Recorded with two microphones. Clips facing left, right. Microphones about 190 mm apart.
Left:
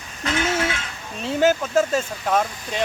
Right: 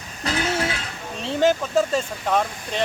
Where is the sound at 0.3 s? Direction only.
35° right (ahead or behind).